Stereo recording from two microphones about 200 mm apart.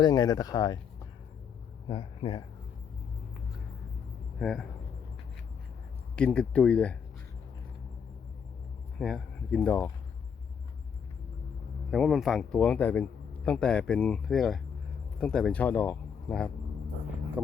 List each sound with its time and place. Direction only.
0.0 s speech: 20° left (ahead or behind)
1.9 s speech: 25° left (ahead or behind)
4.4 s speech: centre (ahead or behind)
6.1 s speech: 5° left (ahead or behind)
9.0 s speech: centre (ahead or behind)
11.9 s speech: centre (ahead or behind)
17.4 s speech: 10° right (ahead or behind)